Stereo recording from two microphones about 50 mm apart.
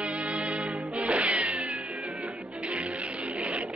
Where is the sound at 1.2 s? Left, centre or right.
Right.